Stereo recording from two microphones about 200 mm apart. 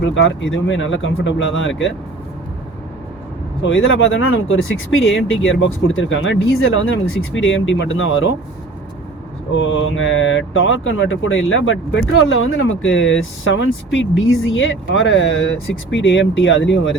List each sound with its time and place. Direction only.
0.0 s speech: 65° left (ahead or behind)
3.6 s speech: 75° left (ahead or behind)
9.5 s speech: 70° left (ahead or behind)